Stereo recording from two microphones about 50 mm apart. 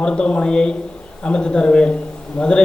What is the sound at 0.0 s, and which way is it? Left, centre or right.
A man's voice, centre.